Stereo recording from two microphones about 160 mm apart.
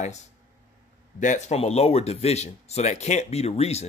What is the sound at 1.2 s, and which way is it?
A man's voice, 50° left (ahead or behind).